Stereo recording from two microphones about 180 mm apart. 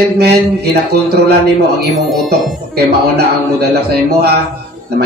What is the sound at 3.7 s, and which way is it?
Speech, 65° right (ahead or behind).